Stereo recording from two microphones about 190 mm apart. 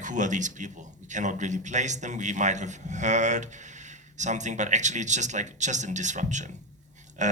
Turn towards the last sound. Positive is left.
turn(degrees=-40)  # may be behind; listen again after turning